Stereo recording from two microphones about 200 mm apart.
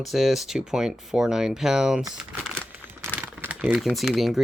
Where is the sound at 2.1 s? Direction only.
5° right (ahead or behind).